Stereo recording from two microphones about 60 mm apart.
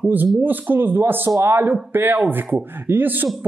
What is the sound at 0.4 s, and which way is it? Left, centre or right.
Speech, right.